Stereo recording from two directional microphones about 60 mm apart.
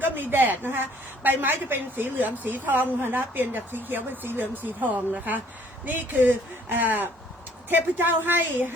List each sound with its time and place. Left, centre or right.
0.0 s a woman's voice: right